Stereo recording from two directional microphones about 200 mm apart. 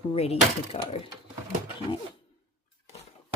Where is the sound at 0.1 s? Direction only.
30° left (ahead or behind).